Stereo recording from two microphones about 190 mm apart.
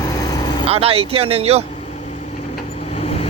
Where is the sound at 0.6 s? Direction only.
30° right (ahead or behind).